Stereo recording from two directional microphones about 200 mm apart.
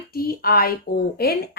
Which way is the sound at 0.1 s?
50° left (ahead or behind).